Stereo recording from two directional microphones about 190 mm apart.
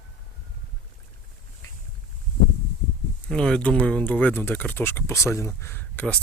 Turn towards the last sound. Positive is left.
turn(degrees=10)  # may be behind; listen again after turning